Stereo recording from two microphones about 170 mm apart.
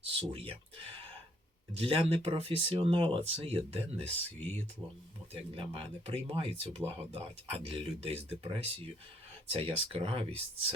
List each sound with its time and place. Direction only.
0.0 s speech: 35° right (ahead or behind)
1.7 s speech: 35° right (ahead or behind)
5.3 s speech: 35° right (ahead or behind)